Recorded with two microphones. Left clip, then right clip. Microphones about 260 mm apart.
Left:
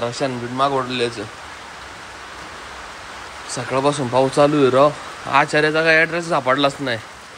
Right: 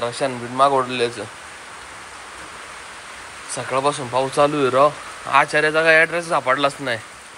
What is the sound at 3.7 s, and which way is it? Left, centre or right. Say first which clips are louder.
Speech: left 2 dB; centre.